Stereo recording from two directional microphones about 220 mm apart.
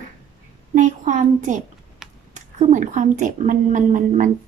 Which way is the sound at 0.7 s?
35° right (ahead or behind).